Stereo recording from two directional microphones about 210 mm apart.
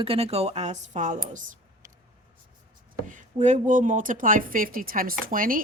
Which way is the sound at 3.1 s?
35° right (ahead or behind).